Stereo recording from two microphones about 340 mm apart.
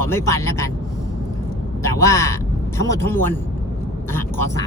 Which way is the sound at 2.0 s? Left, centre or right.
Centre.